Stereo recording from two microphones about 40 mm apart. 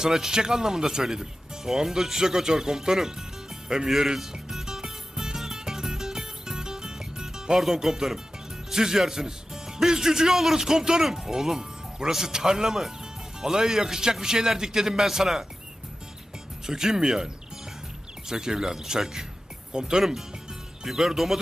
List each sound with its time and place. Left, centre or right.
0.0 s speech: centre
3.7 s music: centre
7.6 s speech: centre
16.6 s speech: centre